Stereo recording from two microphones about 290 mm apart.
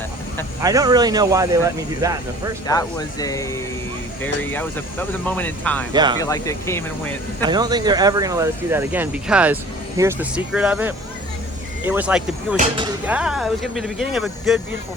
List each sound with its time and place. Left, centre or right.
0.6 s speech: centre
2.6 s speech: centre
5.9 s speech: centre
6.1 s speech: centre
7.4 s speech: centre
12.5 s speech: centre
13.1 s speech: centre